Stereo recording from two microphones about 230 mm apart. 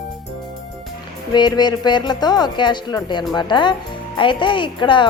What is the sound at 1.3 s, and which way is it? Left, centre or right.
Speech, centre.